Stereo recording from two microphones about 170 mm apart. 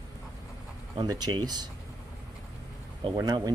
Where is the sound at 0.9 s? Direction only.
25° right (ahead or behind).